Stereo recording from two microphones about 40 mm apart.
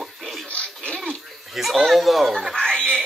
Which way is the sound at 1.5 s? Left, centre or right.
Centre.